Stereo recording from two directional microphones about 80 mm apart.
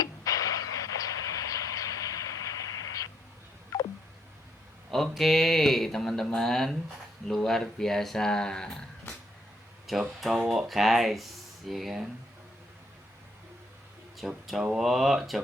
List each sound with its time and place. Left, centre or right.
0.0 s a sound: left
3.7 s telephone dialing: left
4.9 s speech: centre
14.2 s speech: centre